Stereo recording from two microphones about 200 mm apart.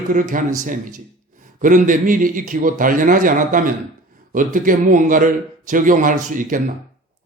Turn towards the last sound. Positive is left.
turn(degrees=-40)  # may be behind; listen again after turning